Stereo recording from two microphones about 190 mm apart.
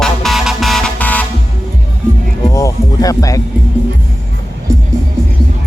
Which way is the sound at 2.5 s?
15° left (ahead or behind).